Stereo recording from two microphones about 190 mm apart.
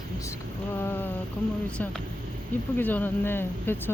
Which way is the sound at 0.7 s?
10° left (ahead or behind).